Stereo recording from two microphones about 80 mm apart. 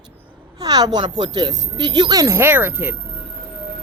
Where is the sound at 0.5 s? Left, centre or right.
Right.